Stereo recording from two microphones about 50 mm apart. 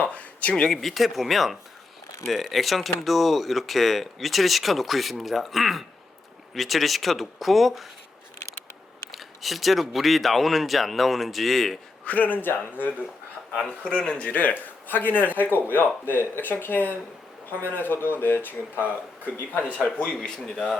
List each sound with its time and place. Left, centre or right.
0.0 s a sound: left
0.7 s speech: centre
9.1 s speech: centre
12.0 s speech: left
14.1 s speech: left
19.5 s speech: left
19.8 s a man's voice: left
20.4 s speech: centre